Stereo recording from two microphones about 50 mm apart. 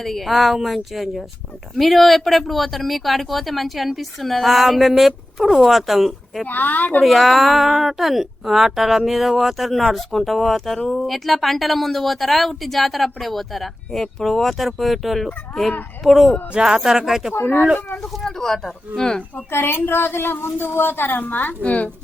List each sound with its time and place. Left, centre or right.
0.0 s speech: centre
6.4 s a woman's voice: left
7.0 s speech: centre
16.6 s speech: centre
17.4 s a woman's voice: left
18.2 s speech: centre
19.5 s a woman's voice: left